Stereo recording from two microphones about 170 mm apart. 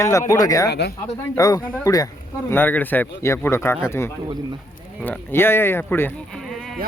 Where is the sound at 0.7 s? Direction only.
75° left (ahead or behind).